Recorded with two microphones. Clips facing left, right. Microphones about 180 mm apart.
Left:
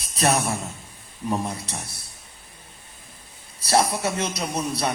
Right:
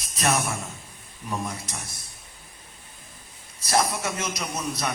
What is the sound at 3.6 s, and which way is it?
Speech, 30° left (ahead or behind).